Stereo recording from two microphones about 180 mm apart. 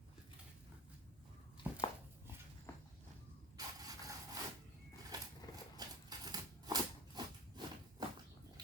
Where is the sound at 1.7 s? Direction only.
5° right (ahead or behind).